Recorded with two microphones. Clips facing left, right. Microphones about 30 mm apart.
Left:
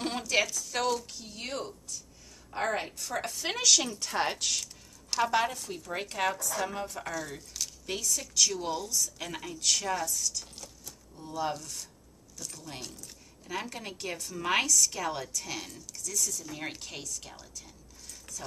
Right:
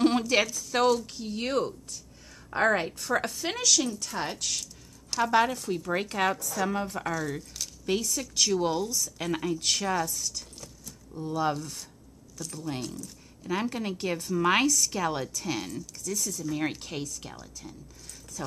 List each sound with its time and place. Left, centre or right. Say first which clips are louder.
0.4 s a woman's voice: right 2 dB; centre
0.7 s a woman's voice: right 7 dB; centre
3.3 s a woman's voice: even; centre
3.7 s speech: even; centre
4.4 s a woman's voice: left 1 dB; centre
5.3 s a woman's voice: right 5 dB; centre
8.4 s a woman's voice: right 4 dB; centre